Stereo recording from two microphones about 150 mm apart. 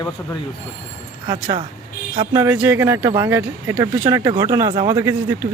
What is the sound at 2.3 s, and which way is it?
Speech, 20° right (ahead or behind).